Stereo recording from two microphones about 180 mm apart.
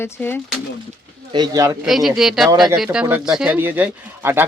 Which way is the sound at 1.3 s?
20° right (ahead or behind).